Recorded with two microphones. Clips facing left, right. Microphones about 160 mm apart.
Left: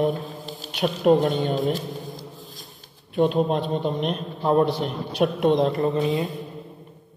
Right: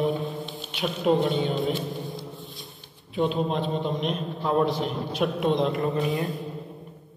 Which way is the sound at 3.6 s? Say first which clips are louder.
Left 2 dB; centre (ahead or behind).